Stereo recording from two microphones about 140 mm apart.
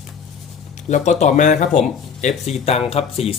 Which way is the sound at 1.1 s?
55° left (ahead or behind).